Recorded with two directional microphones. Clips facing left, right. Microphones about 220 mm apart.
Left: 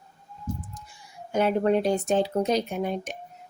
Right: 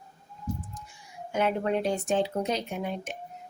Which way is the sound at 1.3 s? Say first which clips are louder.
Left 5 dB; 40° left (ahead or behind).